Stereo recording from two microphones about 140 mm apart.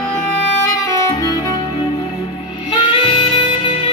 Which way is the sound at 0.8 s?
25° left (ahead or behind).